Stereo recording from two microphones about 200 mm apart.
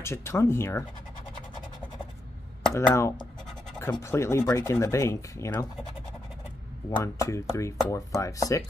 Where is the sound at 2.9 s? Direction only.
15° left (ahead or behind).